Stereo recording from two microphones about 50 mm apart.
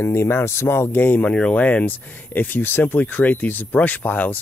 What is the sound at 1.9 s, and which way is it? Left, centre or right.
Speech, left.